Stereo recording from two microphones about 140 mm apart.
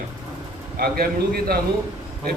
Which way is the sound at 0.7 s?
90° right.